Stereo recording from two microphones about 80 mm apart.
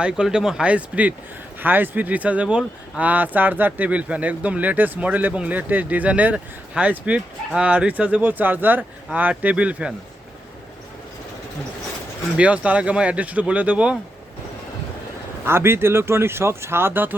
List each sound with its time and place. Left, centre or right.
0.0 s speech: centre
3.0 s speech: right
12.4 s speech: centre
15.4 s speech: right